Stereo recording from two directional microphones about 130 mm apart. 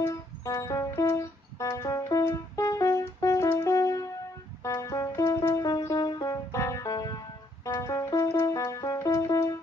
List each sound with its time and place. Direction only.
0.0 s music: 25° left (ahead or behind)